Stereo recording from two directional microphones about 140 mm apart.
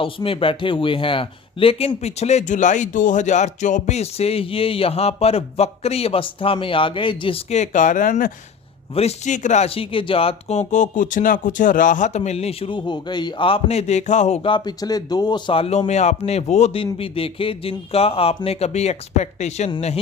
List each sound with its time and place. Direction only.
0.0 s speech: 40° left (ahead or behind)
7.5 s speech: 60° left (ahead or behind)
9.0 s speech: 55° left (ahead or behind)
9.6 s speech: 40° left (ahead or behind); by 14.4 s 55° left (ahead or behind)
14.4 s speech: 35° left (ahead or behind); by 19.7 s 50° left (ahead or behind)